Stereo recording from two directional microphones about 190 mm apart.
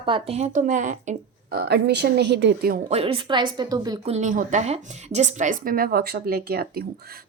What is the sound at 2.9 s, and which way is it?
A woman's voice, 30° right (ahead or behind).